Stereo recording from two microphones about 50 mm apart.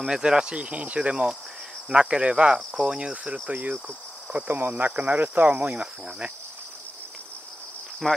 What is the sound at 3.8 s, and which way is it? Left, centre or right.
Cricket, right.